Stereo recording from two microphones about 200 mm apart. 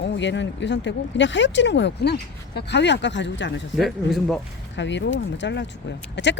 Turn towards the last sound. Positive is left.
turn(degrees=60)  # may be behind; listen again after turning